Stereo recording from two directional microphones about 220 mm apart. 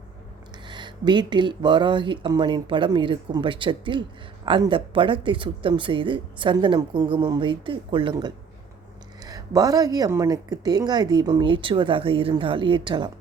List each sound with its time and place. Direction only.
0.7 s speech: 20° right (ahead or behind)